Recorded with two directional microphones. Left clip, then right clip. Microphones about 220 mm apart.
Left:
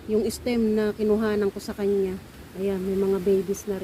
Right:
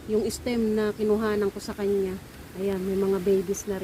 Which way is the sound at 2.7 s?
10° right (ahead or behind).